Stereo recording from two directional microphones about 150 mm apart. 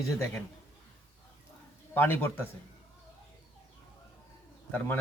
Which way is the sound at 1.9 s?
15° left (ahead or behind).